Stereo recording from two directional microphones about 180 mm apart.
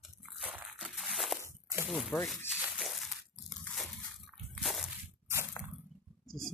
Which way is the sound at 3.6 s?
Centre (ahead or behind).